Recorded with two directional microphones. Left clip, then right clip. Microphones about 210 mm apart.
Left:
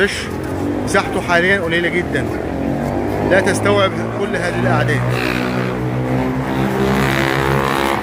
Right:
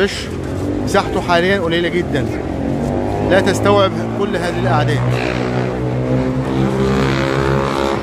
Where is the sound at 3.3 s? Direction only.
10° right (ahead or behind).